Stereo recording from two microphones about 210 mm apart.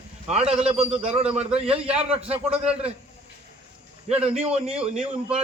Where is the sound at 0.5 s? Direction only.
5° right (ahead or behind).